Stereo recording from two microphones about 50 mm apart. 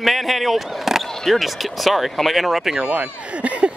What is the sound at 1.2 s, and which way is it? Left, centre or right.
Speech, centre.